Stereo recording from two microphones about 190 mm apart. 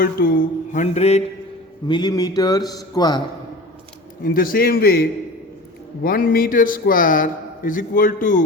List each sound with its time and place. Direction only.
0.0 s mantra: 50° left (ahead or behind)
1.9 s a man's voice: 20° left (ahead or behind)
4.2 s a man's voice: 50° left (ahead or behind)